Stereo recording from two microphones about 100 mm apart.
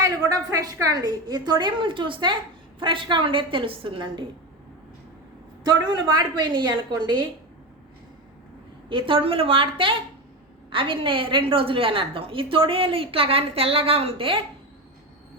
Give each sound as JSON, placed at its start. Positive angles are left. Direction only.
{"t": 0.0, "sound": "a woman's voice", "side_deg": -35}
{"t": 5.6, "sound": "a woman's voice", "side_deg": -40}
{"t": 8.9, "sound": "a woman's voice", "side_deg": -60}